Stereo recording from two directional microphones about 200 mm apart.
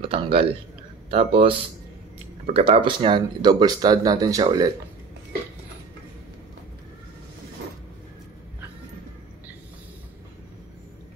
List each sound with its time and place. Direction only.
0.0 s speech: 30° right (ahead or behind)